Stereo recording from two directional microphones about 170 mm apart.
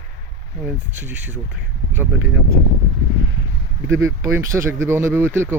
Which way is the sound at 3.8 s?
20° right (ahead or behind).